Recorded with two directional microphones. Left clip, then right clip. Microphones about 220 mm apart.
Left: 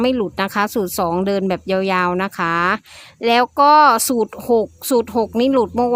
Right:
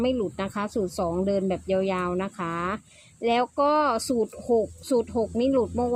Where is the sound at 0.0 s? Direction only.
35° left (ahead or behind).